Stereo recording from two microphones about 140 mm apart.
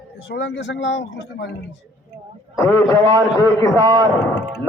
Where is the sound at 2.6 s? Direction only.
25° left (ahead or behind).